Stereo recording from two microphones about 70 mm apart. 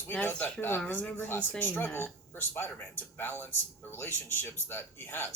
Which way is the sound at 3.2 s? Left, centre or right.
Left.